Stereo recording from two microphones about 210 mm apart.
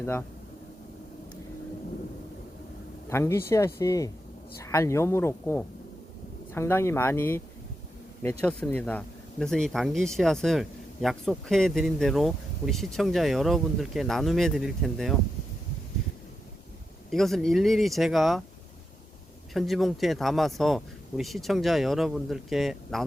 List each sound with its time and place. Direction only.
0.0 s speech: 10° left (ahead or behind)
3.1 s speech: 15° left (ahead or behind)
17.1 s speech: centre (ahead or behind)
19.5 s speech: centre (ahead or behind)